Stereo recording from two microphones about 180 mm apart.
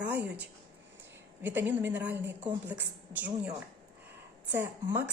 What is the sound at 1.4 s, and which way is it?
A woman's voice, 10° right (ahead or behind).